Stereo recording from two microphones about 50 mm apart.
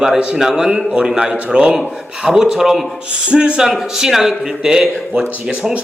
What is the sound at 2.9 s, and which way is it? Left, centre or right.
Speech, right.